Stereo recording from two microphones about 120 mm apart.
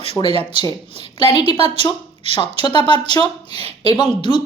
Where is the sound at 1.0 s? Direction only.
55° right (ahead or behind).